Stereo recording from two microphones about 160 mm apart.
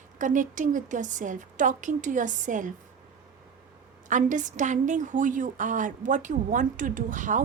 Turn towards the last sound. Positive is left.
turn(degrees=-55)  # may be behind; listen again after turning